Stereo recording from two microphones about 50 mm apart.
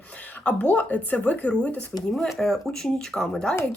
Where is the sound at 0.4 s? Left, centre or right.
Left.